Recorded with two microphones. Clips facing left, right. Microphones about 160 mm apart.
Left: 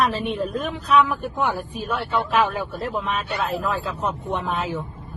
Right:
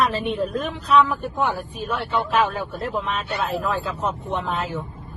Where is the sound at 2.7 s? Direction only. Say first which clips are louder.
Even; centre (ahead or behind).